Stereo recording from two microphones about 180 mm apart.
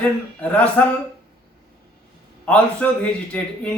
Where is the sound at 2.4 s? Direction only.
5° left (ahead or behind).